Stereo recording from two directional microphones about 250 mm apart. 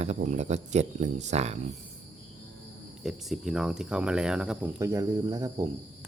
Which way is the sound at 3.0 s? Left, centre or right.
Centre.